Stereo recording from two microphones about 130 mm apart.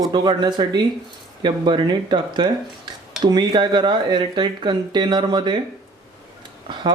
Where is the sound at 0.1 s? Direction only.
35° right (ahead or behind).